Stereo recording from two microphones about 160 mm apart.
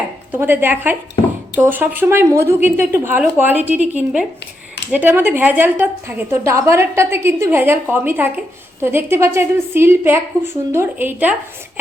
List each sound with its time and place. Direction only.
0.3 s a woman's voice: 15° right (ahead or behind)